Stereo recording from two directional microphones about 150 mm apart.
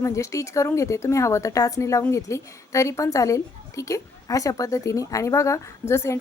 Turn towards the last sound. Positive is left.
turn(degrees=15)  # may be behind; listen again after turning